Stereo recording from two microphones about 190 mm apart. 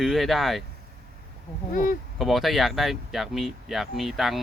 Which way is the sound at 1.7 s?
45° left (ahead or behind).